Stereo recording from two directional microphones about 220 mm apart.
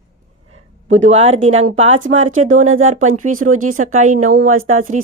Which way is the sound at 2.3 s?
70° right (ahead or behind).